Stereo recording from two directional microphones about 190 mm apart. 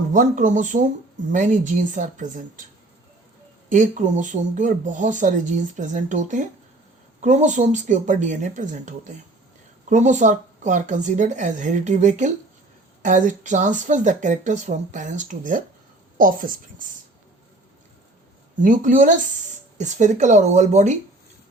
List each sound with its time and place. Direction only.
0.1 s speech: 40° right (ahead or behind)
3.7 s a woman's voice: 40° right (ahead or behind)
18.6 s a woman's voice: 45° right (ahead or behind)